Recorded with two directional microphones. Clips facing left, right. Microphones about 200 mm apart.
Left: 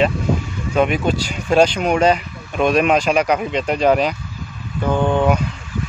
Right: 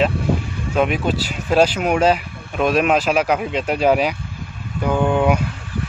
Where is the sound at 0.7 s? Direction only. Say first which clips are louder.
Left 2 dB; centre (ahead or behind).